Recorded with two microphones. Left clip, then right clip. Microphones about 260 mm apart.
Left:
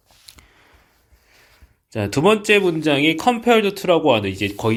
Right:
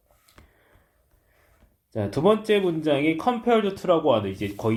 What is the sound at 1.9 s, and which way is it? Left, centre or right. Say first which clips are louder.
Speech: left 4 dB; left.